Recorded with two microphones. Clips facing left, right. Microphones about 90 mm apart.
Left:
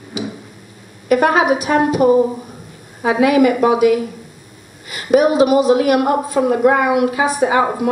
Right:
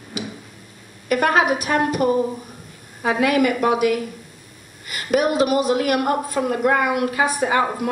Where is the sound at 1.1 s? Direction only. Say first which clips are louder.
Left 5 dB; 5° left (ahead or behind).